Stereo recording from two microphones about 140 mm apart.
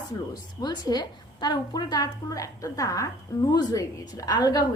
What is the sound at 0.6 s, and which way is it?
A woman's voice, 30° left (ahead or behind).